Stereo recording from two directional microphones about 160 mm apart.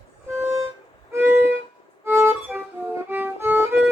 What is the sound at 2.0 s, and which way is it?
Violin, 10° right (ahead or behind).